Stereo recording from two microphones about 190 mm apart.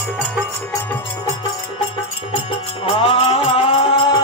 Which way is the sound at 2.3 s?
30° left (ahead or behind).